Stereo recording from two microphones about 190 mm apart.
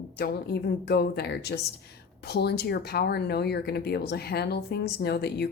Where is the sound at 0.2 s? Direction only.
55° left (ahead or behind).